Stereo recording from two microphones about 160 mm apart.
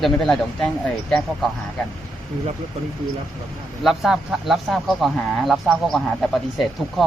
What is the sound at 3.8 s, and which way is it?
Speech, centre (ahead or behind).